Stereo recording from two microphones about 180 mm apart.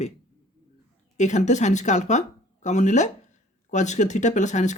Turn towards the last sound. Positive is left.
turn(degrees=40)  # may be behind; listen again after turning